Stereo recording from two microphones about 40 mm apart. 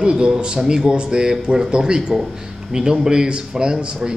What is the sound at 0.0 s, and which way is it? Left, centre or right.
Speech, right.